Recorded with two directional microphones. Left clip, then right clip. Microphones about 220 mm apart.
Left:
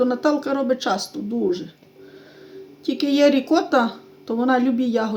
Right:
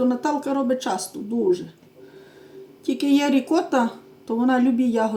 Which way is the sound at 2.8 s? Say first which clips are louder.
Left 4 dB; 30° left (ahead or behind).